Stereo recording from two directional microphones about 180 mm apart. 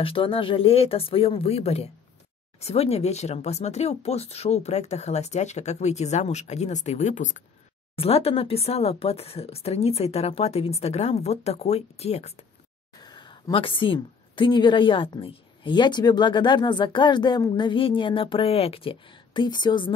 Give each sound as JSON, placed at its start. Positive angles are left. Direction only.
{"t": 0.0, "sound": "speech", "side_deg": 30}
{"t": 7.9, "sound": "speech", "side_deg": 30}
{"t": 13.0, "sound": "a woman's voice", "side_deg": 25}